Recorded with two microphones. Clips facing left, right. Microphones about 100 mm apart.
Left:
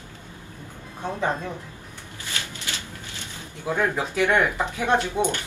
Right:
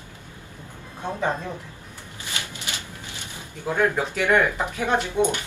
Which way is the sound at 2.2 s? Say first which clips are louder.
Even; 20° right (ahead or behind).